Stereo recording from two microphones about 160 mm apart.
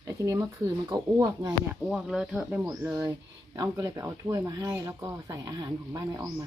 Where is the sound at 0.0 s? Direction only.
20° right (ahead or behind).